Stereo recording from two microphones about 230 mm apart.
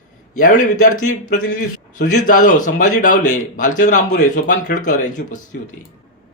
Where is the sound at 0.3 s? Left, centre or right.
Left.